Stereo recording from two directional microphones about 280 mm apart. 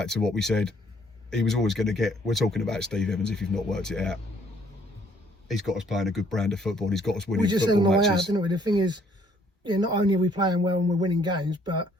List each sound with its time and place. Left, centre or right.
0.0 s speech: centre
5.5 s speech: centre
7.4 s speech: centre